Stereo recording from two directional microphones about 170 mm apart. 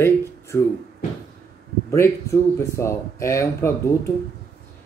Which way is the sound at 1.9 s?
15° left (ahead or behind).